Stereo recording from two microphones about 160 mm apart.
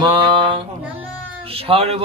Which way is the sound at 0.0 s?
30° right (ahead or behind).